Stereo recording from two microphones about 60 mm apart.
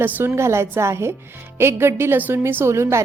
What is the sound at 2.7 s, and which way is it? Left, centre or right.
Speech, right.